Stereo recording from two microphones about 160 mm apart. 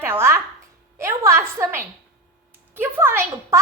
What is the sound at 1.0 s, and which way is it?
A woman's voice, 15° right (ahead or behind).